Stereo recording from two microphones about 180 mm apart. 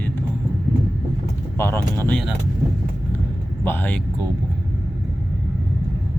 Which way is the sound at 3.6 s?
10° left (ahead or behind).